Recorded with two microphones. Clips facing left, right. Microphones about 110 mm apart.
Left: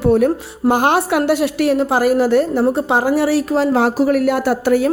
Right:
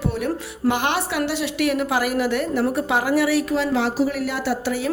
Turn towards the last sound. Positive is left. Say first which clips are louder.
# left 8 dB
turn(degrees=50)  # may be behind; listen again after turning